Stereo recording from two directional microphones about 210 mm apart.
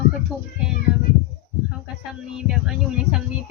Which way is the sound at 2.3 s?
5° right (ahead or behind).